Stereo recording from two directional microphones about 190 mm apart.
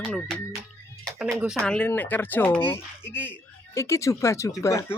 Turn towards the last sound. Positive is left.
turn(degrees=15)  # may be behind; listen again after turning